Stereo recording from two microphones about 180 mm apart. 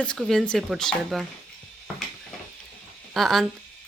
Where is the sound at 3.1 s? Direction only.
Centre (ahead or behind).